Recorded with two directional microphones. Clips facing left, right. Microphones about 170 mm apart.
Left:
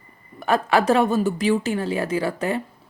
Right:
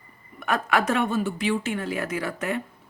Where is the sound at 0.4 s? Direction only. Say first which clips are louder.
Left 5 dB; 30° left (ahead or behind).